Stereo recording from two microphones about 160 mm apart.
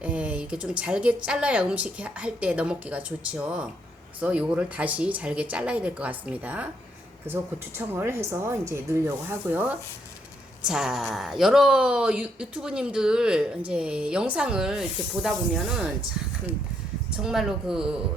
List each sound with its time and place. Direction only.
0.0 s a woman's voice: 10° right (ahead or behind)
17.2 s speech: 5° right (ahead or behind)